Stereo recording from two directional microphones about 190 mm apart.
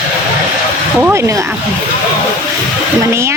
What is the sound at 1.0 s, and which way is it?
Speech, 15° right (ahead or behind).